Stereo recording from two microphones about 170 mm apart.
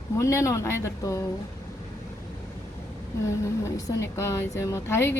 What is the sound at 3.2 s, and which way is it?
A woman's voice, 20° left (ahead or behind).